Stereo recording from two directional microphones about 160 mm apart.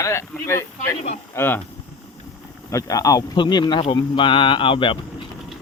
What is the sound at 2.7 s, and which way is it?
A man's voice, 20° left (ahead or behind).